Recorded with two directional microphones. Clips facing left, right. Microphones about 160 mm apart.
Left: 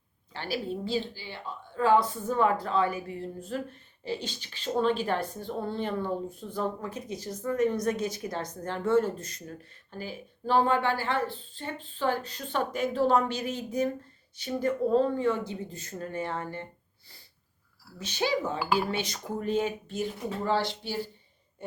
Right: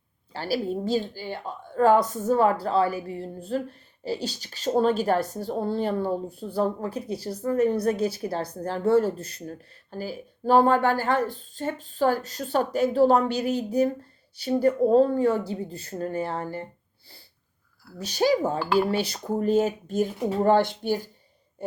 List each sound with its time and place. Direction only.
0.3 s a woman's voice: 35° right (ahead or behind)
18.0 s a woman's voice: 40° right (ahead or behind)